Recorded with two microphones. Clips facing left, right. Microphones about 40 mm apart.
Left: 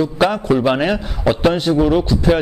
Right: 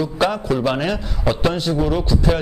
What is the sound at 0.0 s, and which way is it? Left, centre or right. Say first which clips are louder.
Speech: left 3 dB; centre.